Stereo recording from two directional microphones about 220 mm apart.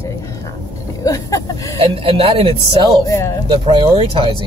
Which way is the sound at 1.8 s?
25° right (ahead or behind).